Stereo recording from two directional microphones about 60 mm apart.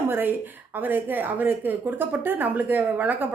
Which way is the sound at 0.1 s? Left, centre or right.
Right.